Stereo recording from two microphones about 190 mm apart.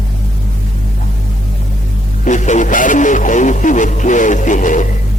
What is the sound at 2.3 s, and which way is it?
Speech, 40° left (ahead or behind).